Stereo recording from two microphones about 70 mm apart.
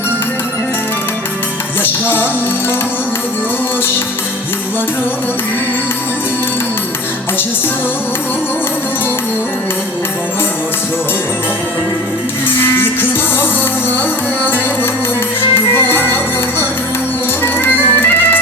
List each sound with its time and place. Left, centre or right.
1.8 s music: left
12.5 s music: left
15.7 s music: left